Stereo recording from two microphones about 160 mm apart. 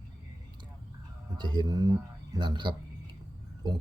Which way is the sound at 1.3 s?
30° right (ahead or behind).